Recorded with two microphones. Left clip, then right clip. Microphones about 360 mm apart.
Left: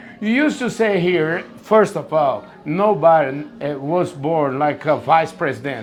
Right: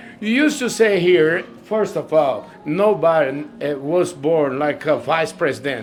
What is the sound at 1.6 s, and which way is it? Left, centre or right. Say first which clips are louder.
Speech: left 8 dB; left.